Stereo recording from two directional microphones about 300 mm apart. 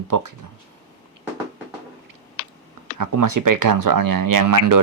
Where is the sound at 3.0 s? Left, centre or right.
Right.